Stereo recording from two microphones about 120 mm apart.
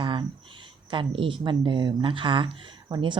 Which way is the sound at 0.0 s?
45° right (ahead or behind).